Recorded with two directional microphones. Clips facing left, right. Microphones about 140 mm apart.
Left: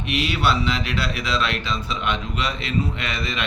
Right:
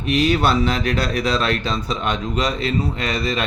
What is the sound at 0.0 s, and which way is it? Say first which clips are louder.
A man's voice: right 5 dB; 40° right (ahead or behind).